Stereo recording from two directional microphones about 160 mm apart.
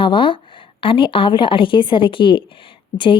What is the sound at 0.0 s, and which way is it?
A woman's voice, 30° left (ahead or behind).